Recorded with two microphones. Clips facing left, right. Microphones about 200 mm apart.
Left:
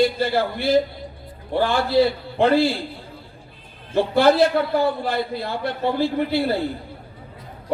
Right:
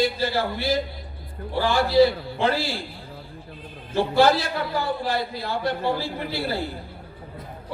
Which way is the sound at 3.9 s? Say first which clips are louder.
Left 3 dB; 55° left (ahead or behind).